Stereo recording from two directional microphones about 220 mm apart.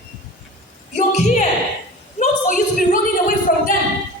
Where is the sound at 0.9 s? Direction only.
35° left (ahead or behind).